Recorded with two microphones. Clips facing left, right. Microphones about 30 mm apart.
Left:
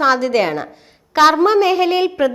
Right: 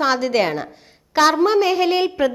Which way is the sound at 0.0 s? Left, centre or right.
Centre.